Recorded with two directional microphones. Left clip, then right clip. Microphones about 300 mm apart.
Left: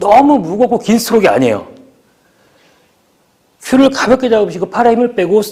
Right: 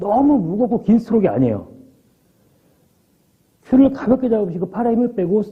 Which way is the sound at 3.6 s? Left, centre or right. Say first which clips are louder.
Left 5 dB; centre.